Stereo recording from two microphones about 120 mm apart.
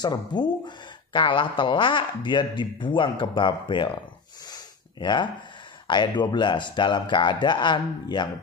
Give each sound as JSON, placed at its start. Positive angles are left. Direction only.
{"t": 0.0, "sound": "speech", "side_deg": 40}
{"t": 4.5, "sound": "a sound", "side_deg": 40}
{"t": 5.9, "sound": "speech", "side_deg": 40}